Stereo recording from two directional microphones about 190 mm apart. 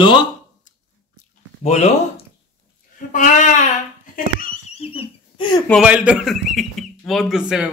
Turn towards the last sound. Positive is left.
turn(degrees=0)  # may be behind; listen again after turning